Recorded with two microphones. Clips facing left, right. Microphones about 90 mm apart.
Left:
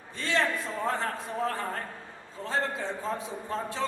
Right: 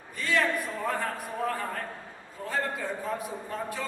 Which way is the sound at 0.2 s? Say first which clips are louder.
Right 1 dB; 25° left (ahead or behind).